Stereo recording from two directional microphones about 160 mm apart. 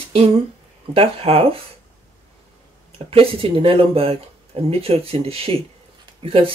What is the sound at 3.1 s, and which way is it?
Speech, 35° right (ahead or behind).